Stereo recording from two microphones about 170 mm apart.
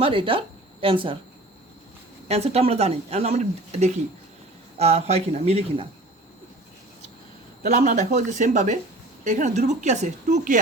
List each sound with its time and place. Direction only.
0.0 s speech: 30° right (ahead or behind)
2.2 s speech: 40° right (ahead or behind)
7.7 s a woman's voice: 45° right (ahead or behind)